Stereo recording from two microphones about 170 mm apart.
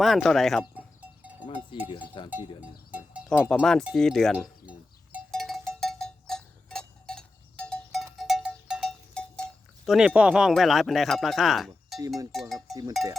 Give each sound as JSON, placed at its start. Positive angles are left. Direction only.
{"t": 0.0, "sound": "speech", "side_deg": 0}
{"t": 0.6, "sound": "cowbell", "side_deg": -10}
{"t": 1.9, "sound": "cowbell", "side_deg": 30}
{"t": 2.9, "sound": "cowbell", "side_deg": -5}
{"t": 3.2, "sound": "speech", "side_deg": -5}
{"t": 5.3, "sound": "cowbell", "side_deg": 0}
{"t": 9.8, "sound": "speech", "side_deg": 0}
{"t": 11.9, "sound": "cowbell", "side_deg": -20}
{"t": 12.3, "sound": "sheep", "side_deg": 0}